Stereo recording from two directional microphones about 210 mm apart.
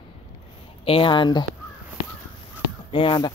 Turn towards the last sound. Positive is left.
turn(degrees=25)  # may be behind; listen again after turning